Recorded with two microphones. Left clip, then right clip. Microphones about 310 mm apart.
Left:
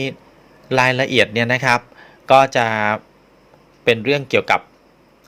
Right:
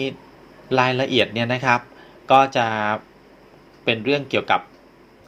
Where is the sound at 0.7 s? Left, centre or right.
Left.